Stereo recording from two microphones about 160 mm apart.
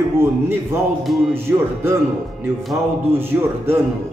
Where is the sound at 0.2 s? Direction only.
15° right (ahead or behind).